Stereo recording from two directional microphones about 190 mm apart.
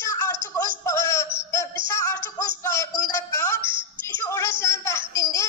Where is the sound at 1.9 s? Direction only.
15° left (ahead or behind).